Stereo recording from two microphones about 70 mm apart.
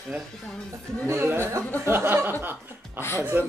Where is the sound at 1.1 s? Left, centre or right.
Right.